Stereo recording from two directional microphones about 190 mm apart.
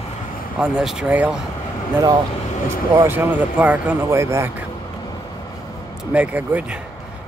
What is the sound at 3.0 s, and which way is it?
Speech, 10° right (ahead or behind).